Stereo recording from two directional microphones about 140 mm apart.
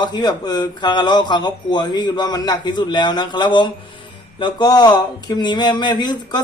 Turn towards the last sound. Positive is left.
turn(degrees=30)  # may be behind; listen again after turning